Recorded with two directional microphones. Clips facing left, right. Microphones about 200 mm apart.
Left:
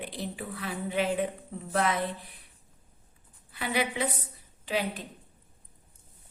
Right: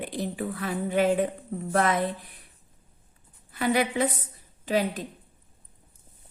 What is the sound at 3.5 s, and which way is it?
A woman's voice, 45° right (ahead or behind).